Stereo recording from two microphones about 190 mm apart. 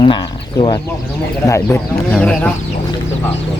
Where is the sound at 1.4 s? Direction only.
15° left (ahead or behind).